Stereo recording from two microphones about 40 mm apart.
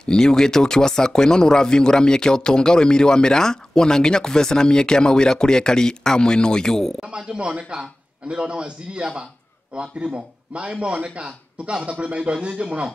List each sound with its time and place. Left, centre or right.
0.0 s speech: centre
7.0 s a man's voice: right